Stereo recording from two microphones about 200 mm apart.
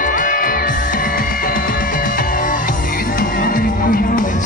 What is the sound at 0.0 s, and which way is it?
Music, 40° left (ahead or behind).